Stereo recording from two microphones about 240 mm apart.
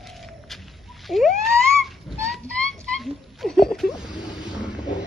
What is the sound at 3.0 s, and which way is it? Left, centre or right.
Cat, centre.